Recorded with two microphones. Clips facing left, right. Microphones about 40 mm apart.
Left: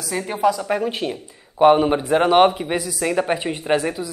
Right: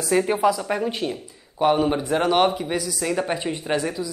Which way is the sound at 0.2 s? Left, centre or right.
Centre.